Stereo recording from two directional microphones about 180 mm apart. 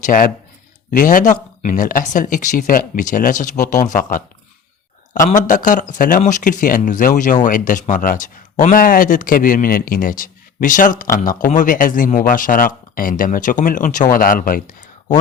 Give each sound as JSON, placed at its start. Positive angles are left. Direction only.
{"t": 0.0, "sound": "speech", "side_deg": 50}
{"t": 5.2, "sound": "speech", "side_deg": 45}